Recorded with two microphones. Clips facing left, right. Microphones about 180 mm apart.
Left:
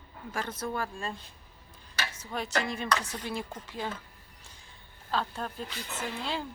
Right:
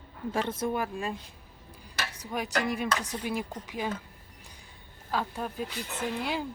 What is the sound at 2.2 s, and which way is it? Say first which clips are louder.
Speech: right 2 dB; 15° right (ahead or behind).